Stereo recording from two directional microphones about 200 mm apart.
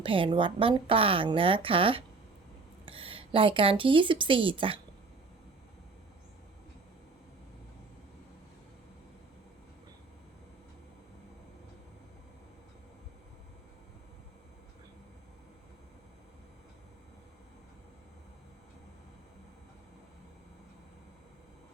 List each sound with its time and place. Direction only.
0.0 s speech: 25° right (ahead or behind)